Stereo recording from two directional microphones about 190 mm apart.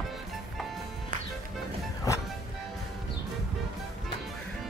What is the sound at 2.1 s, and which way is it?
Music, 15° left (ahead or behind).